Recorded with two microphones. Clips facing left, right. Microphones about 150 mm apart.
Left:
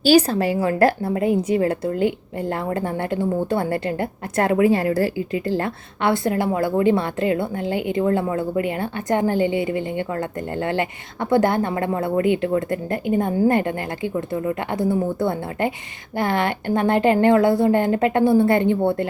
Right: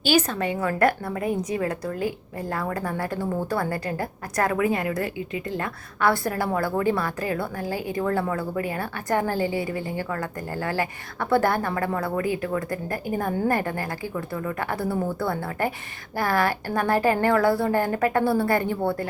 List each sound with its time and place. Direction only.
0.0 s a woman's voice: 35° left (ahead or behind)